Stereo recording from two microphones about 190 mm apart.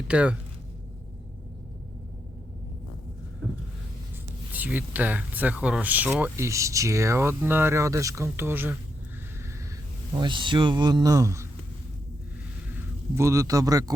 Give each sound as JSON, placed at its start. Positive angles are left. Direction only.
{"t": 0.1, "sound": "speech", "side_deg": -5}
{"t": 4.5, "sound": "speech", "side_deg": -10}
{"t": 10.2, "sound": "speech", "side_deg": -25}
{"t": 13.1, "sound": "speech", "side_deg": -15}